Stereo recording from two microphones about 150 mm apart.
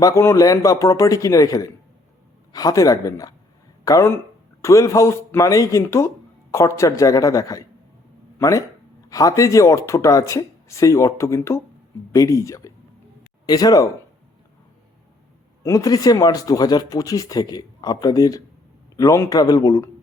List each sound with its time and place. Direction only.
0.0 s speech: 20° left (ahead or behind)
15.6 s speech: 20° left (ahead or behind)